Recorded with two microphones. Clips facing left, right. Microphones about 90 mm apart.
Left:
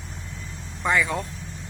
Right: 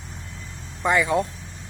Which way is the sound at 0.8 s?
10° right (ahead or behind).